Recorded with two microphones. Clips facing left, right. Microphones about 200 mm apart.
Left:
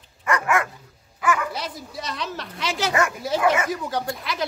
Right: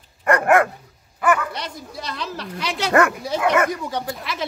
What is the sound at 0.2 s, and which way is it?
Dog, 60° right (ahead or behind).